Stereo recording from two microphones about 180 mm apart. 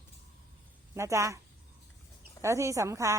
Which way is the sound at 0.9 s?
15° right (ahead or behind).